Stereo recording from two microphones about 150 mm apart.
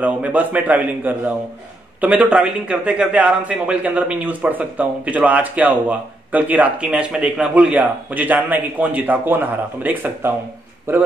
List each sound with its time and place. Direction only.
0.0 s a man's voice: 10° right (ahead or behind)